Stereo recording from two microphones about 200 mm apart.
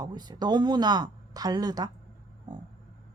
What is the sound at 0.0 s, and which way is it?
A woman's voice, 20° right (ahead or behind).